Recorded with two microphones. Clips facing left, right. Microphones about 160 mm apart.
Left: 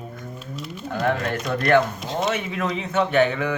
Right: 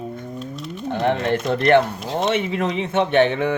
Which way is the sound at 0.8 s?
25° right (ahead or behind).